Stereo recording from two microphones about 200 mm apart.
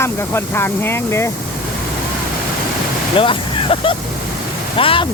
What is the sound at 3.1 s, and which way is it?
Speech, 25° left (ahead or behind).